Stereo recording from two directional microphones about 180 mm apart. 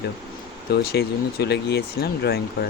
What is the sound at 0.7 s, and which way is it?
Speech, 65° left (ahead or behind).